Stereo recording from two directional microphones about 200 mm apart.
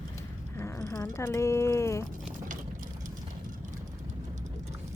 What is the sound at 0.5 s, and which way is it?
Speech, 15° left (ahead or behind).